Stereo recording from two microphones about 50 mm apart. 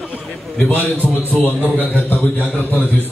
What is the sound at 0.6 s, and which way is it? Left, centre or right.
A man's voice, left.